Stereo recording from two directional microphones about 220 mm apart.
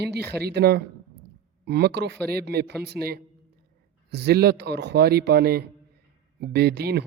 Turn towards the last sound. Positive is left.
turn(degrees=-50)  # may be behind; listen again after turning